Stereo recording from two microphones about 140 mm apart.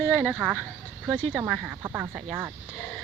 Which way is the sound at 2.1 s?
10° right (ahead or behind).